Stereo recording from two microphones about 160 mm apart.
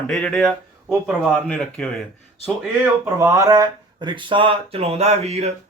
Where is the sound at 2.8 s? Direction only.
20° right (ahead or behind); by 5.5 s 45° right (ahead or behind).